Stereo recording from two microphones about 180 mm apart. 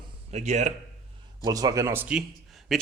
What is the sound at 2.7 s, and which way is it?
Speech, centre (ahead or behind).